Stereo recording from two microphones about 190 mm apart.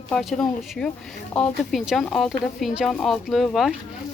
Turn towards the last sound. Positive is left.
turn(degrees=0)  # may be behind; listen again after turning